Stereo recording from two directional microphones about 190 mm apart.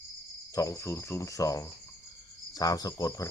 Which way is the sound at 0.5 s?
15° left (ahead or behind).